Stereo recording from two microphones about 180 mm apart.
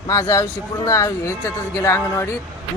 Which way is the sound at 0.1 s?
15° left (ahead or behind).